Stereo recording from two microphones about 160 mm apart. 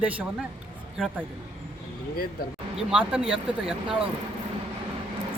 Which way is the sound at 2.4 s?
75° left (ahead or behind).